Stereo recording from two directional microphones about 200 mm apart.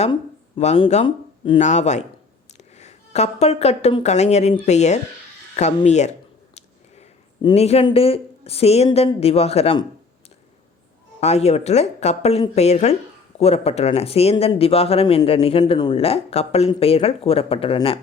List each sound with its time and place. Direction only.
0.0 s speech: 30° left (ahead or behind)
7.4 s speech: 30° left (ahead or behind)
11.2 s speech: 35° left (ahead or behind)